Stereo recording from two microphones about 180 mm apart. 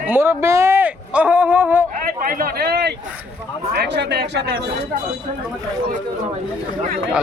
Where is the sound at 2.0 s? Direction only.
50° right (ahead or behind); by 4.7 s 65° right (ahead or behind).